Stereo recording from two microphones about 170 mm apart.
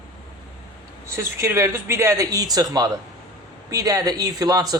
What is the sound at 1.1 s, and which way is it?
A man's voice, 15° right (ahead or behind).